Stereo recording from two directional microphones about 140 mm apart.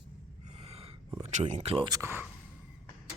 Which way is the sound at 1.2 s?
50° right (ahead or behind).